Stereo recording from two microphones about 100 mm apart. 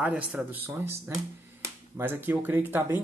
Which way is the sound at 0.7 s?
25° right (ahead or behind).